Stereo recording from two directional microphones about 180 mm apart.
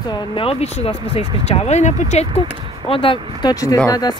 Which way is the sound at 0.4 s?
35° left (ahead or behind).